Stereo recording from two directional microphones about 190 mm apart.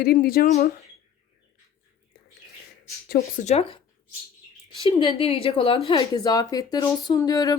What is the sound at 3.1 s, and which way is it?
Speech, 35° left (ahead or behind).